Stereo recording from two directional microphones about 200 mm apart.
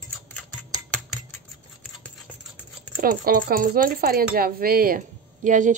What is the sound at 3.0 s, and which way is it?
Speech, 45° right (ahead or behind).